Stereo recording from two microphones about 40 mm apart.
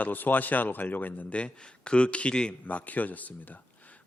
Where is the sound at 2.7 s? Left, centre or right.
Left.